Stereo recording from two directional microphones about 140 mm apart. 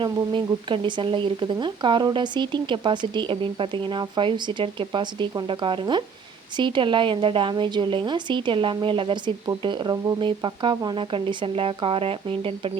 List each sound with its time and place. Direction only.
0.0 s speech: 35° right (ahead or behind)